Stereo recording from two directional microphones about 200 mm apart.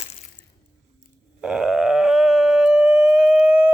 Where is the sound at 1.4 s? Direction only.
5° right (ahead or behind).